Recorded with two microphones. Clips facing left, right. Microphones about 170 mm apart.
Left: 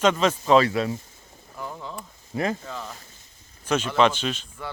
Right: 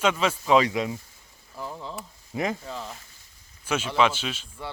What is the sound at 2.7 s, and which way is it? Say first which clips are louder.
Speech: even; 30° right (ahead or behind).